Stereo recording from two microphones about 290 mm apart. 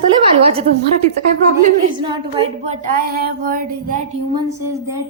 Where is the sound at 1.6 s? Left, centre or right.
Right.